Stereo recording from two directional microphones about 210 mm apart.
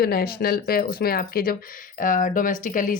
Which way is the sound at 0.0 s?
45° left (ahead or behind).